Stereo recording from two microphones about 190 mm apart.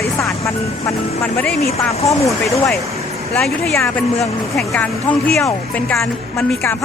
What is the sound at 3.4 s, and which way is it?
Speech, 5° left (ahead or behind).